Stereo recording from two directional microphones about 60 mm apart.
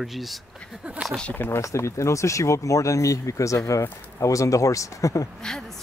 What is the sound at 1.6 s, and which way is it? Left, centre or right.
Speech, left.